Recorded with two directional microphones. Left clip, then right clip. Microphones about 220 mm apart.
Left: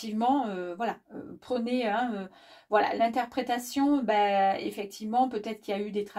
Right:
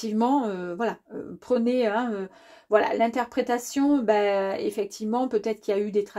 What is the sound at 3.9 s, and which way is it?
Speech, 40° right (ahead or behind).